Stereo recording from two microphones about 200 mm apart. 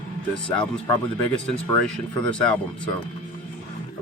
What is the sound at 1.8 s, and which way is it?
Speech, 5° left (ahead or behind).